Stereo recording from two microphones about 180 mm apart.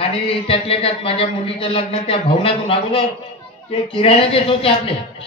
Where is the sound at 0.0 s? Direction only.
30° left (ahead or behind).